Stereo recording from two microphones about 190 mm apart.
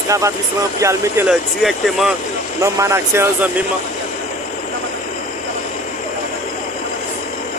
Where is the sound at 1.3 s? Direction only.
Centre (ahead or behind).